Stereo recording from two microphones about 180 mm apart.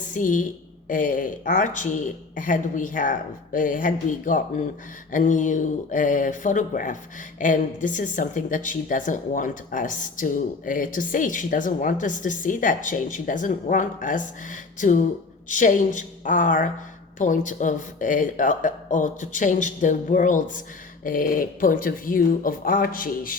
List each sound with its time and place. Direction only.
0.0 s a woman's voice: 45° left (ahead or behind)